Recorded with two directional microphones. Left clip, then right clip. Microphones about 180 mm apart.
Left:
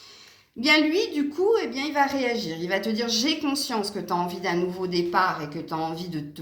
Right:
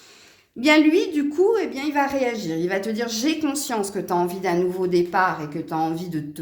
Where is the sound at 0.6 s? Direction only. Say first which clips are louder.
Right 4 dB; 50° right (ahead or behind).